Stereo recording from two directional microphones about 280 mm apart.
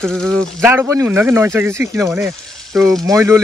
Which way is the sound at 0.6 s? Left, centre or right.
Centre.